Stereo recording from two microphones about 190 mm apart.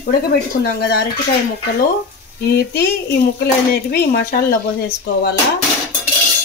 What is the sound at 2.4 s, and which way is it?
Speech, 60° left (ahead or behind).